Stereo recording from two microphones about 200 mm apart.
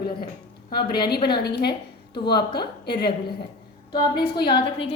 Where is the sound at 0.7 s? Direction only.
50° left (ahead or behind).